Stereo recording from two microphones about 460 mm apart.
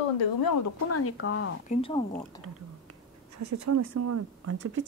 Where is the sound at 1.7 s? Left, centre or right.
Centre.